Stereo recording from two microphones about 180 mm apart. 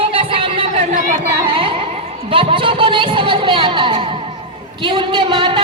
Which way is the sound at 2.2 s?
30° right (ahead or behind).